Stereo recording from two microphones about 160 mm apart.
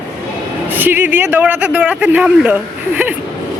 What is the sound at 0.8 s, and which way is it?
Speech, 10° right (ahead or behind).